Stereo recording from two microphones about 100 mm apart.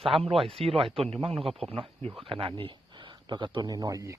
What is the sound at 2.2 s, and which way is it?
A man's voice, 60° right (ahead or behind).